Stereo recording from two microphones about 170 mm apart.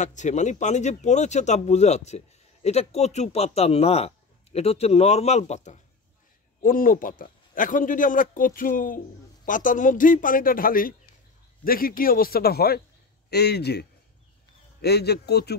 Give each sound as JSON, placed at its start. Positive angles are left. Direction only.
{"t": 0.0, "sound": "speech", "side_deg": 45}
{"t": 6.6, "sound": "a man's voice", "side_deg": 55}